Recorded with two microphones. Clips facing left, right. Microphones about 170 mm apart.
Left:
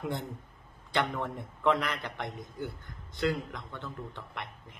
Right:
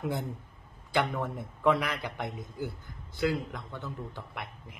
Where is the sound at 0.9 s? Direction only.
5° right (ahead or behind).